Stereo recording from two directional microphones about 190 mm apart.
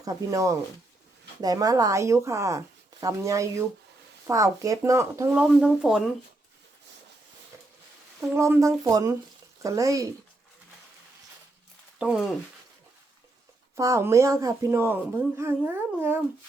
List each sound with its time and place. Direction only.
0.0 s speech: 20° right (ahead or behind)
5.3 s speech: 5° right (ahead or behind)
8.2 s speech: 10° right (ahead or behind)
11.9 s speech: 5° right (ahead or behind)
13.7 s speech: 15° right (ahead or behind)